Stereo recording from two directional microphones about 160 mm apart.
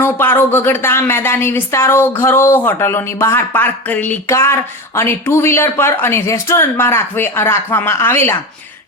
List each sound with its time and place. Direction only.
0.0 s a woman's voice: 15° left (ahead or behind)